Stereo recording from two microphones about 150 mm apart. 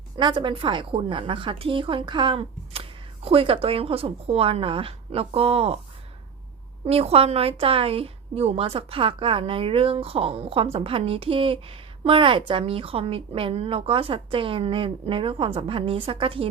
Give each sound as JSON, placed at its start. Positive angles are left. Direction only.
{"t": 0.2, "sound": "a woman's voice", "side_deg": -30}
{"t": 6.8, "sound": "a woman's voice", "side_deg": -40}